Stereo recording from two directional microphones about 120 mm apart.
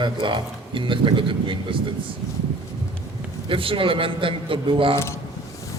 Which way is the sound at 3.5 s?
45° right (ahead or behind).